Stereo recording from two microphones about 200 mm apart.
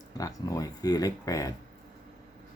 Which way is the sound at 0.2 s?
15° left (ahead or behind).